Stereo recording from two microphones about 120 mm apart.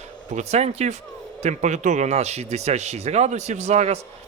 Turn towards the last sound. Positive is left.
turn(degrees=-65)  # may be behind; listen again after turning